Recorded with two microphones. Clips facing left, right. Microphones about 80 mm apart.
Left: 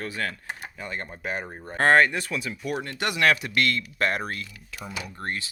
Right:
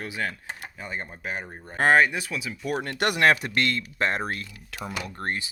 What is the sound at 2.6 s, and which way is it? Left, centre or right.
Speech, right.